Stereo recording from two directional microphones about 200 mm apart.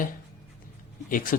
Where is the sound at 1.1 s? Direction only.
45° left (ahead or behind).